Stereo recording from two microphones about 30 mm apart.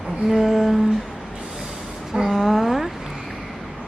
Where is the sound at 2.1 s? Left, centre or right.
Centre.